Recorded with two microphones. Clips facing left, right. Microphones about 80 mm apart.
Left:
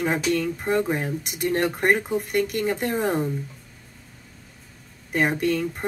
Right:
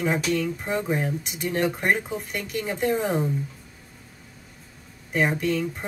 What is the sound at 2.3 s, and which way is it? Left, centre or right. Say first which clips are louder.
Speech: left 7 dB; left.